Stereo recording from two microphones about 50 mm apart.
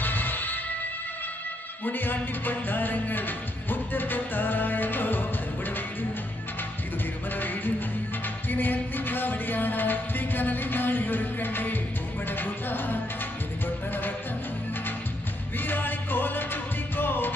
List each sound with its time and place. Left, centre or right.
0.0 s music: left
1.9 s music: left
7.3 s music: left
15.6 s music: left